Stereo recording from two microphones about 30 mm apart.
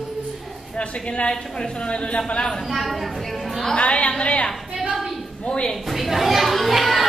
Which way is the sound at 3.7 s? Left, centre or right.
Left.